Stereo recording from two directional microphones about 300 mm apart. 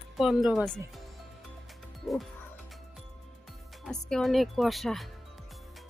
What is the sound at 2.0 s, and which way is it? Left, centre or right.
Music, centre.